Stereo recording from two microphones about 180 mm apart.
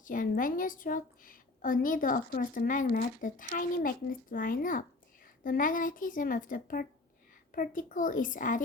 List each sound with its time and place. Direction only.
0.0 s a woman's voice: 50° left (ahead or behind)